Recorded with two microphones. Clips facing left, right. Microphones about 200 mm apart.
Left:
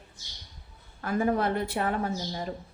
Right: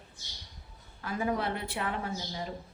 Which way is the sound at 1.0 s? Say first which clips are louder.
Left 5 dB; 50° left (ahead or behind).